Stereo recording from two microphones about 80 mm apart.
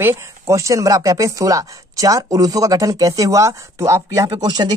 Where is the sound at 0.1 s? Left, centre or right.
Right.